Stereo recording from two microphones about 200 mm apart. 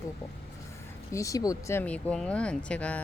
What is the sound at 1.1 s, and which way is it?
Speech, 15° left (ahead or behind).